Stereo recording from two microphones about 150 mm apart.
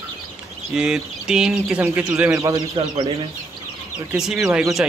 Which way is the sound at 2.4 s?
25° right (ahead or behind).